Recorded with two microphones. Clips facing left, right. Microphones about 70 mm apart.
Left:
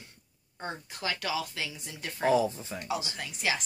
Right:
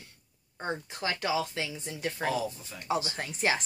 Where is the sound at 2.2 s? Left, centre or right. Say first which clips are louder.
Left 8 dB; left.